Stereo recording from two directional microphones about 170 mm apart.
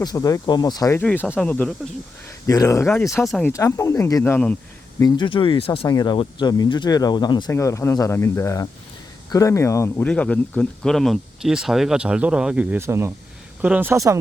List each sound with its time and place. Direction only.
0.0 s speech: 20° left (ahead or behind); by 1.7 s 5° left (ahead or behind)
2.5 s speech: 20° left (ahead or behind)
3.2 s speech: centre (ahead or behind)
3.5 s speech: 20° left (ahead or behind)
4.9 s speech: 25° left (ahead or behind)
5.8 s speech: 25° left (ahead or behind); by 14.2 s 15° right (ahead or behind)